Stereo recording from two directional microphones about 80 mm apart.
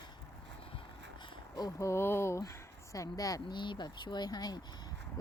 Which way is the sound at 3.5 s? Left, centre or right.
Left.